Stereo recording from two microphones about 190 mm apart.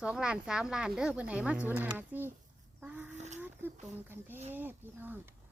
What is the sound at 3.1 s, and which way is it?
Speech, 40° right (ahead or behind).